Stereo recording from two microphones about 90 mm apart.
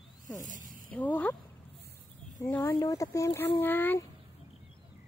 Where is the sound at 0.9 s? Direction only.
15° left (ahead or behind).